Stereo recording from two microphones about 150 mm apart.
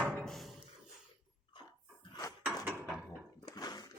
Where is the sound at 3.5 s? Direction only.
25° left (ahead or behind).